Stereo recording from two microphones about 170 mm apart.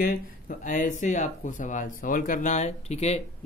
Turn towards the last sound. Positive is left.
turn(degrees=40)  # may be behind; listen again after turning